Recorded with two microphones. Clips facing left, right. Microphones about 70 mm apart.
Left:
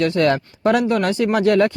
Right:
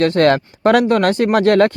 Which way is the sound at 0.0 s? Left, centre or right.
Right.